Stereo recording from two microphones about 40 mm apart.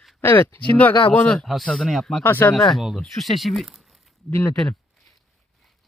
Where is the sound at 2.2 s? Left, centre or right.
Left.